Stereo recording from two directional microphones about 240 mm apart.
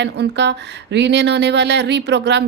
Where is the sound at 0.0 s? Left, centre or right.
Right.